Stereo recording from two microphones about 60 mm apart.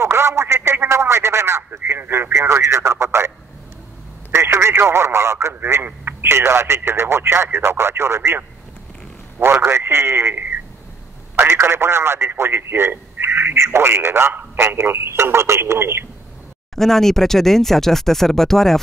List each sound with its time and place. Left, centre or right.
0.0 s a sound: right
1.7 s speech: right
4.3 s speech: right
11.4 s speech: right
16.7 s speech: centre